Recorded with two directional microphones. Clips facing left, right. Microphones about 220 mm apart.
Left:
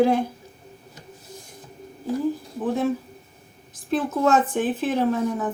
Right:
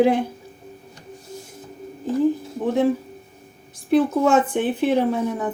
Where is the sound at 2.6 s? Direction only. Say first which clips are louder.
Right 4 dB; 15° right (ahead or behind).